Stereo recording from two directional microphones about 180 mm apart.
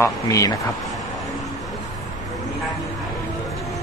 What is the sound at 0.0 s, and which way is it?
Speech, 20° left (ahead or behind).